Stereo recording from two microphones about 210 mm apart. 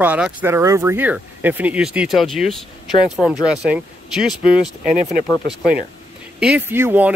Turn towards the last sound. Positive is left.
turn(degrees=-10)  # may be behind; listen again after turning